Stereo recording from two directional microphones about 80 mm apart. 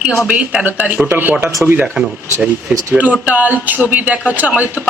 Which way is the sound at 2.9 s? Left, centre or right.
Centre.